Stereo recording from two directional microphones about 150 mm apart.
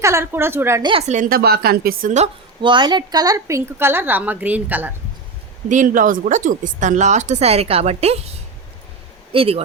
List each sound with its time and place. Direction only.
0.0 s a woman's voice: 15° right (ahead or behind)
0.8 s speech: 30° right (ahead or behind)
1.0 s speech: 60° right (ahead or behind); by 2.1 s 75° right (ahead or behind)
2.1 s a woman's voice: 40° right (ahead or behind); by 4.9 s 10° right (ahead or behind)
5.6 s a woman's voice: 60° right (ahead or behind); by 9.6 s 40° right (ahead or behind)